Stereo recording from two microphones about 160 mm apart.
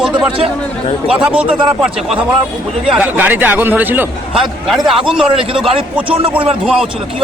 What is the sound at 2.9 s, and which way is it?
A man's voice, 10° right (ahead or behind).